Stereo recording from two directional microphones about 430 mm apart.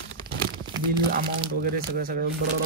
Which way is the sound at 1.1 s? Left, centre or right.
Centre.